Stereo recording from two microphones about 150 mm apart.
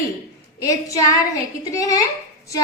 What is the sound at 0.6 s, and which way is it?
A woman's voice, 20° left (ahead or behind).